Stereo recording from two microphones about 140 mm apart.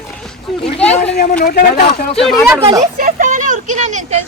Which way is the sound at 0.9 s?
55° left (ahead or behind).